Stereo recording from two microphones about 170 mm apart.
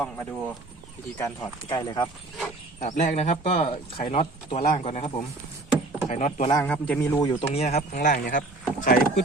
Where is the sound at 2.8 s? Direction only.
45° left (ahead or behind).